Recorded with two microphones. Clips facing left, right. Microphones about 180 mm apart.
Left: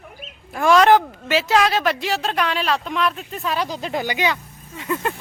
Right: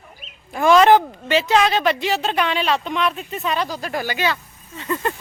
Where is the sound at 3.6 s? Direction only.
20° left (ahead or behind).